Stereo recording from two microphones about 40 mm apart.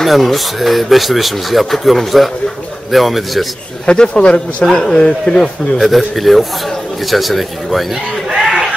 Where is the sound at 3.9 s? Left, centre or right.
Left.